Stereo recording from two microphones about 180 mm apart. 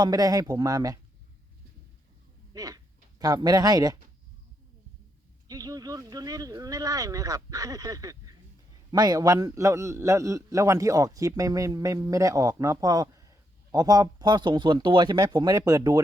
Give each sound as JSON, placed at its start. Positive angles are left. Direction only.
{"t": 0.0, "sound": "a man's voice", "side_deg": -20}
{"t": 2.5, "sound": "speech", "side_deg": -20}
{"t": 5.5, "sound": "a man's voice", "side_deg": -20}